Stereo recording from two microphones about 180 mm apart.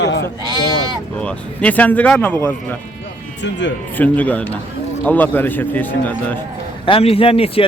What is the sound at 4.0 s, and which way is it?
A man's voice, 10° left (ahead or behind).